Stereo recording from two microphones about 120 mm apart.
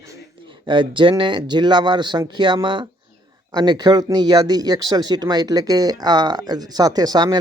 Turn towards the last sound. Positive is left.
turn(degrees=-35)  # may be behind; listen again after turning